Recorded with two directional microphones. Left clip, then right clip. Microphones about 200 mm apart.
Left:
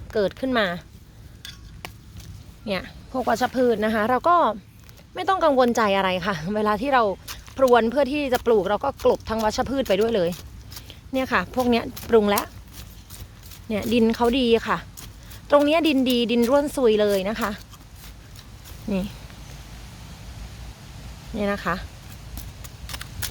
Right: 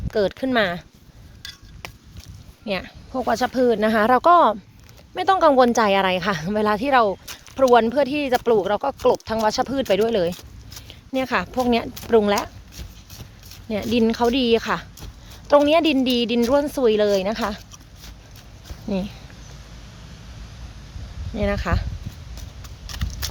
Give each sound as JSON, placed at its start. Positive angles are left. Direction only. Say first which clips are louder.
{"t": 0.1, "sound": "speech", "louder": "right 2 dB", "side_deg": -10}
{"t": 1.8, "sound": "a sound", "louder": "right 1 dB", "side_deg": -20}
{"t": 2.6, "sound": "speech", "louder": "right 2 dB", "side_deg": -5}
{"t": 13.7, "sound": "a woman's voice", "louder": "right 1 dB", "side_deg": 0}
{"t": 18.9, "sound": "a woman's voice", "louder": "right 1 dB", "side_deg": 0}
{"t": 21.3, "sound": "a woman's voice", "louder": "right 1 dB", "side_deg": 0}
{"t": 22.9, "sound": "vehicle", "louder": "right 2 dB", "side_deg": -10}